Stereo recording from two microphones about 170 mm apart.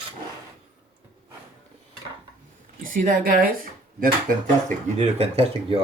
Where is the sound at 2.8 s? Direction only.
55° right (ahead or behind).